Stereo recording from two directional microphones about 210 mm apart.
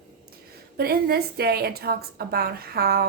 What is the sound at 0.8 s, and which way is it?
A woman's voice, 45° right (ahead or behind).